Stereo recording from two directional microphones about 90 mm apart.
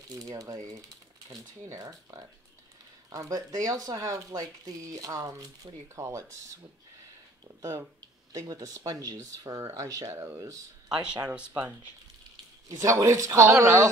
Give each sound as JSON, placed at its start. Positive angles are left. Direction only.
{"t": 0.1, "sound": "speech", "side_deg": -45}
{"t": 8.3, "sound": "speech", "side_deg": -40}
{"t": 10.9, "sound": "speech", "side_deg": -10}
{"t": 12.6, "sound": "speech", "side_deg": -35}